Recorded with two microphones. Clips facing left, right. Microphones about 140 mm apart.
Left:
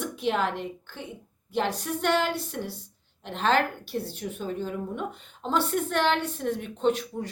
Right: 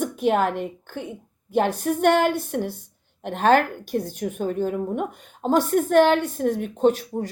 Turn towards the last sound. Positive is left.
turn(degrees=-40)  # may be behind; listen again after turning